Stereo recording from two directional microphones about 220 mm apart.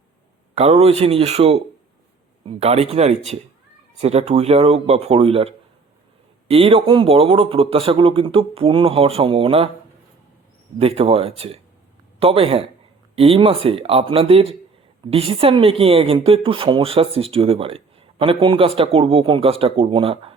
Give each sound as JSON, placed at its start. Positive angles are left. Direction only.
{"t": 0.5, "sound": "speech", "side_deg": -30}
{"t": 10.8, "sound": "speech", "side_deg": -25}